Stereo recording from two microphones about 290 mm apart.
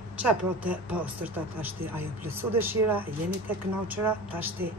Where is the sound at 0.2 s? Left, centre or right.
Centre.